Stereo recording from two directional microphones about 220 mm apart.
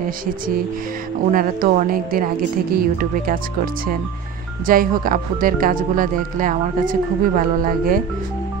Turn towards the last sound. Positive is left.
turn(degrees=-40)  # may be behind; listen again after turning